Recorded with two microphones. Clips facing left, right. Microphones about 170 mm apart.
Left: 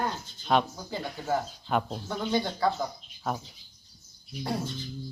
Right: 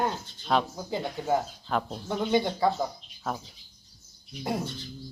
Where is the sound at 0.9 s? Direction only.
20° right (ahead or behind).